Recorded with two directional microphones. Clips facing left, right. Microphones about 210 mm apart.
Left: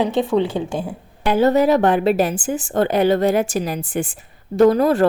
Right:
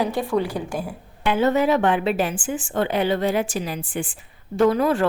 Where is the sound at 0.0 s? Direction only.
20° left (ahead or behind).